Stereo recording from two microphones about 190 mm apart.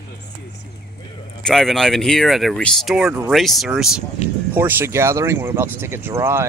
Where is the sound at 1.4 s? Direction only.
Centre (ahead or behind).